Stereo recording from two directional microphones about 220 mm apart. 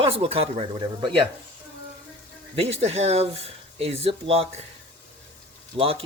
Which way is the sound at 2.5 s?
25° right (ahead or behind).